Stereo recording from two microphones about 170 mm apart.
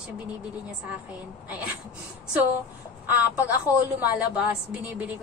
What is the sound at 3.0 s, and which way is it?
A woman's voice, 10° right (ahead or behind).